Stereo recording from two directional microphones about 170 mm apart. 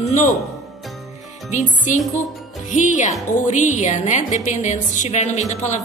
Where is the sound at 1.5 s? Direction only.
45° left (ahead or behind).